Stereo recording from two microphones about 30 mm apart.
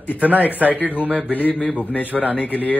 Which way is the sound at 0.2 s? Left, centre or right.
Right.